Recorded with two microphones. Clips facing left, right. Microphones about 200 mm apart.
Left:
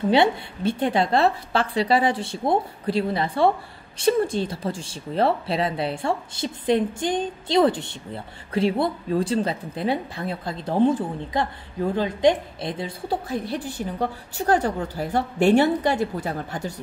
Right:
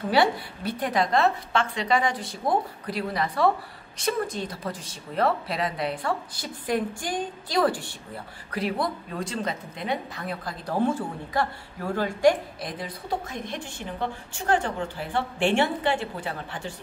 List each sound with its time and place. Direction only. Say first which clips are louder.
0.1 s a woman's voice: left 2 dB; 25° left (ahead or behind); by 16.7 s 40° left (ahead or behind)